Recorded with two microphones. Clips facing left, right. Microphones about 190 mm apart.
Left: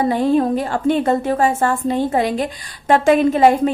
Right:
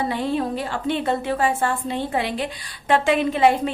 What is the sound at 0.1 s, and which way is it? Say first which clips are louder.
A woman's voice: left 8 dB; 45° left (ahead or behind).